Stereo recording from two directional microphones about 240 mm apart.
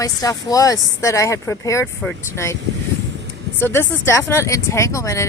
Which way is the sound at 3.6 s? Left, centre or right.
Centre.